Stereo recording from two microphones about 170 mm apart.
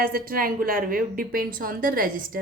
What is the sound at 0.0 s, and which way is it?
A woman's voice, 60° right (ahead or behind).